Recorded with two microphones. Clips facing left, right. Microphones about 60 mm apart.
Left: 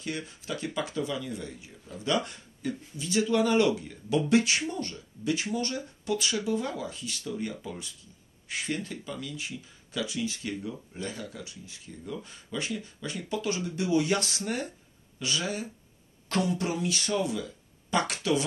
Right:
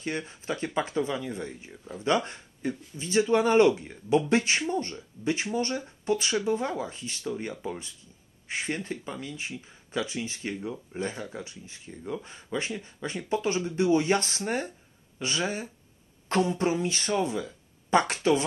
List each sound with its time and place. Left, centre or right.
0.0 s speech: right